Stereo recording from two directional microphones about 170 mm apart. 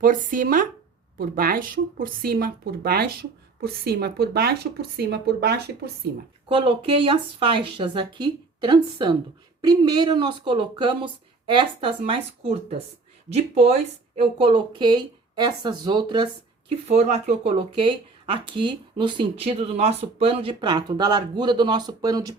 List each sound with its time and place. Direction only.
0.0 s speech: 50° right (ahead or behind); by 5.9 s 70° right (ahead or behind)
6.5 s speech: 30° right (ahead or behind)
16.9 s speech: 40° right (ahead or behind); by 22.4 s 20° right (ahead or behind)